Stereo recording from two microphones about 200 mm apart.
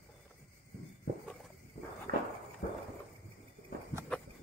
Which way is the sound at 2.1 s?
50° right (ahead or behind).